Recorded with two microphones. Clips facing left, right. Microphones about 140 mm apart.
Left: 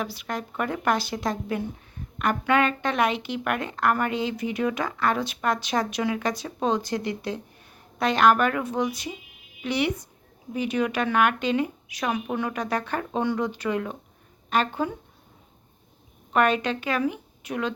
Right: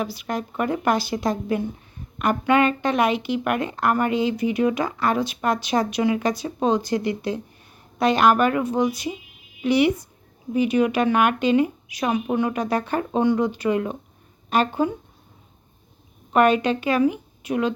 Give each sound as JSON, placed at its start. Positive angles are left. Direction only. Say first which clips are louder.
{"t": 0.0, "sound": "speech", "louder": "right 4 dB", "side_deg": -5}
{"t": 12.0, "sound": "a woman's voice", "louder": "right 5 dB", "side_deg": -20}
{"t": 12.4, "sound": "speech", "louder": "right 5 dB", "side_deg": -5}
{"t": 16.3, "sound": "speech", "louder": "right 5 dB", "side_deg": -10}